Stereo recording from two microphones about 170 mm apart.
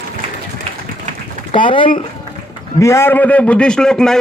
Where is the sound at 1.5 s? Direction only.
30° left (ahead or behind).